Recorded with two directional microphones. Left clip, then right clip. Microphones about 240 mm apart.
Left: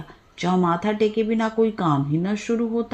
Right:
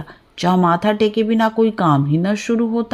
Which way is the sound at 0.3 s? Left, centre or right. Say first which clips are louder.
Right 6 dB; right.